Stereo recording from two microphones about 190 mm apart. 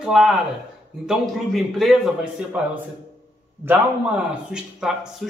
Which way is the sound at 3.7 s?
5° right (ahead or behind).